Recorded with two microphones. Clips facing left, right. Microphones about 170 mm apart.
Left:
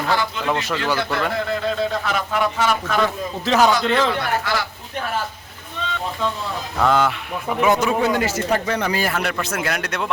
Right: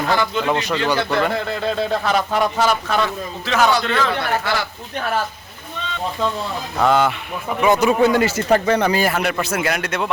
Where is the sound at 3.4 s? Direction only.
35° left (ahead or behind).